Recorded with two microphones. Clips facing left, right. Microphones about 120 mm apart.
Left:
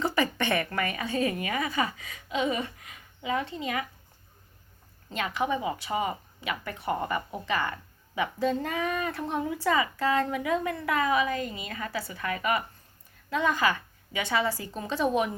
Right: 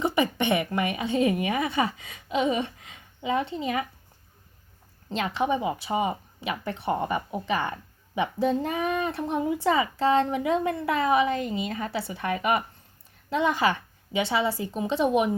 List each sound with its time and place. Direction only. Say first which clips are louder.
0.0 s a woman's voice: right 3 dB; 20° right (ahead or behind)
5.0 s speech: right 3 dB; 25° right (ahead or behind)